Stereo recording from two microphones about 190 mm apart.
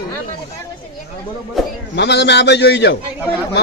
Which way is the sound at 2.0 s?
65° left (ahead or behind).